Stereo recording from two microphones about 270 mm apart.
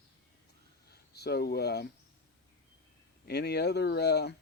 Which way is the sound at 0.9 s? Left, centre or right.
Left.